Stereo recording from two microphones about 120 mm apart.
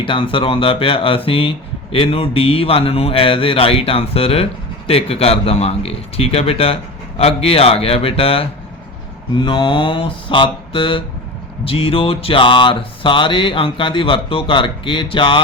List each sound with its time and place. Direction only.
0.0 s speech: 45° left (ahead or behind)
9.4 s speech: 40° left (ahead or behind)